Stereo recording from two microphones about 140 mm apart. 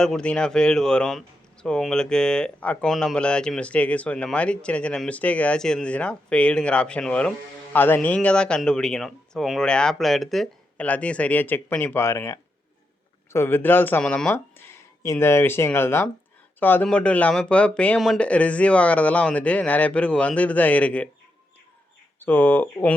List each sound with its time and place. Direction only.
0.0 s speech: 5° left (ahead or behind)
14.3 s speech: 20° left (ahead or behind)
22.2 s speech: 15° left (ahead or behind)